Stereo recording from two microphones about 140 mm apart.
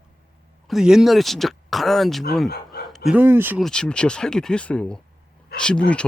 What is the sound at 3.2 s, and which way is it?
Speech, 15° right (ahead or behind).